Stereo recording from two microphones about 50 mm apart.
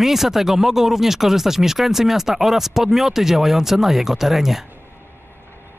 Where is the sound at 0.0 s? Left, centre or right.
Centre.